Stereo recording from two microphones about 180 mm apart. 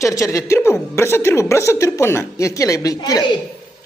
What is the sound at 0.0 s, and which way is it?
A woman's voice, 15° left (ahead or behind).